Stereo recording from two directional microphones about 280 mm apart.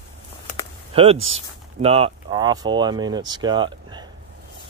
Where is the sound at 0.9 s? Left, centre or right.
Right.